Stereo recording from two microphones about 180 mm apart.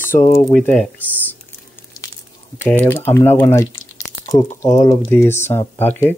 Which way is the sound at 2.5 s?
10° left (ahead or behind).